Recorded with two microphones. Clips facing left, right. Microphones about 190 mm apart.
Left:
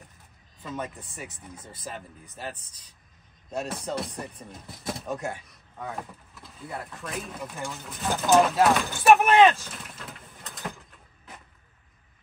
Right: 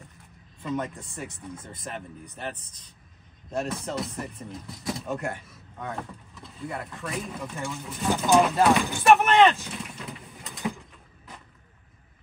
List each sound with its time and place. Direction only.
0.6 s speech: 5° left (ahead or behind)
3.7 s speech: centre (ahead or behind)
9.1 s mechanisms: 5° left (ahead or behind)